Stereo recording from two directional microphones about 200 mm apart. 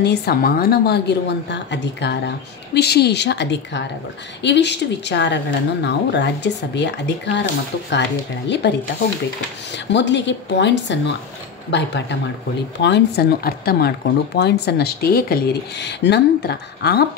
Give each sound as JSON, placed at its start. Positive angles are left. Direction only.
{"t": 0.0, "sound": "a woman's voice", "side_deg": 55}
{"t": 8.6, "sound": "a woman's voice", "side_deg": 60}
{"t": 9.8, "sound": "a woman's voice", "side_deg": 60}